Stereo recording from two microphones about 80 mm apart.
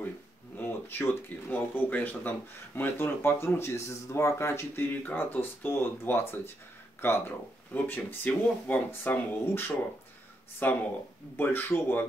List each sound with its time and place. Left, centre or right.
0.6 s speech: left